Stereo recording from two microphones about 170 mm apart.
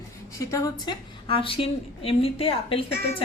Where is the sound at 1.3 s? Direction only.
30° left (ahead or behind).